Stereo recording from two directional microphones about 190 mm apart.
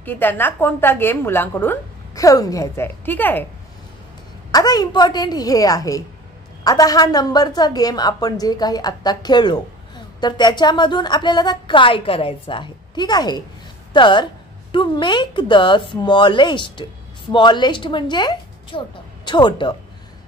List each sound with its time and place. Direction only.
0.0 s a woman's voice: 10° left (ahead or behind)
4.5 s a woman's voice: 20° left (ahead or behind)